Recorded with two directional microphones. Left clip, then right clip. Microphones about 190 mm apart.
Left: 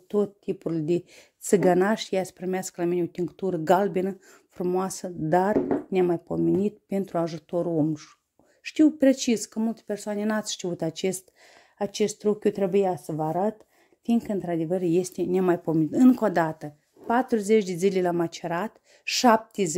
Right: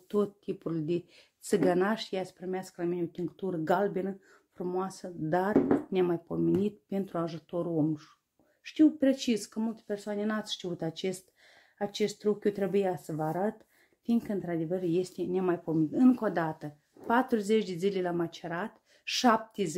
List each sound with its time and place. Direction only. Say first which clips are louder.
0.1 s a woman's voice: left 5 dB; 25° left (ahead or behind)